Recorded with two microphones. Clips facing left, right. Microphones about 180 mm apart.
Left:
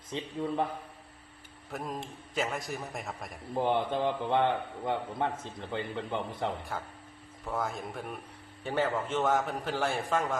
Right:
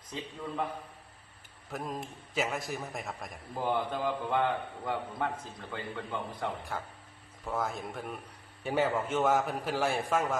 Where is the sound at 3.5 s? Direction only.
25° left (ahead or behind).